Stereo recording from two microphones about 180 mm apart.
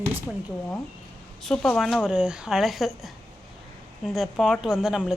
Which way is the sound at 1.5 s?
Centre (ahead or behind).